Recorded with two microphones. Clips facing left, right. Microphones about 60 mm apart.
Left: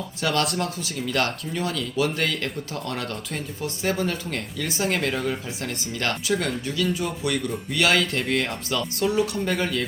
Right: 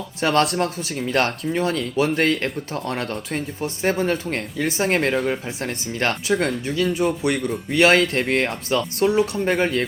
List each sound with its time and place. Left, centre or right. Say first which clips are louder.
0.2 s speech: right 6 dB; right
0.4 s speech: right 4 dB; right
0.8 s speech: right 4 dB; right